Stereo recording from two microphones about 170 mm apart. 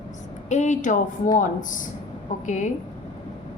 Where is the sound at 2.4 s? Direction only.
45° left (ahead or behind).